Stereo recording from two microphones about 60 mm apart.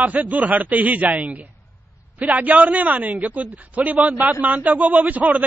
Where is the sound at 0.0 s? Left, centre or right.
Right.